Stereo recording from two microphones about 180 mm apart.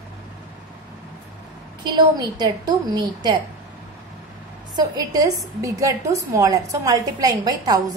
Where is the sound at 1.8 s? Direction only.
25° right (ahead or behind).